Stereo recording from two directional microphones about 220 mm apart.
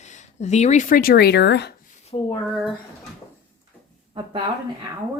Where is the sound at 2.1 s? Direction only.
25° left (ahead or behind).